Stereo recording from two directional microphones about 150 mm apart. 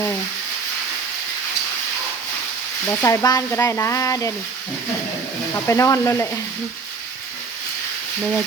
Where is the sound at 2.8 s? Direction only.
20° left (ahead or behind).